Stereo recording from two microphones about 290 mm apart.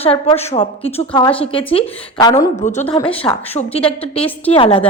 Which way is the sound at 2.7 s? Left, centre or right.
Left.